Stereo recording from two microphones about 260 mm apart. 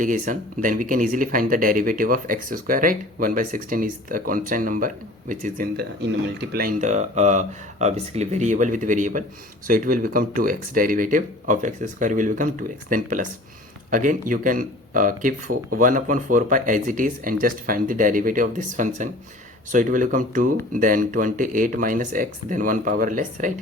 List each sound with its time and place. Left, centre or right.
0.0 s speech: right